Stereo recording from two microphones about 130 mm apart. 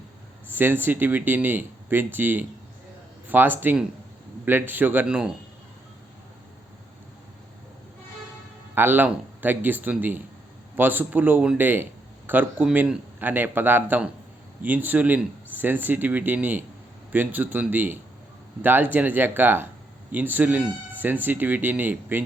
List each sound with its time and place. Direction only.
0.5 s speech: 15° right (ahead or behind)
8.7 s speech: 15° right (ahead or behind)